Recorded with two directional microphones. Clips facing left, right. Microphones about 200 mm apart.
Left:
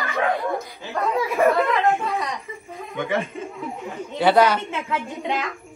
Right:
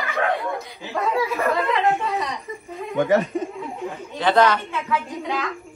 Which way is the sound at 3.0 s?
40° right (ahead or behind).